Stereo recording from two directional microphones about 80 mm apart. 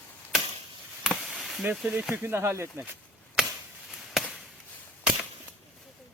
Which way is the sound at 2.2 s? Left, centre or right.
Right.